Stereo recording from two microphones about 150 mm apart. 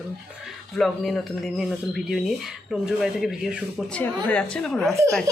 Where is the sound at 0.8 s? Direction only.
Centre (ahead or behind).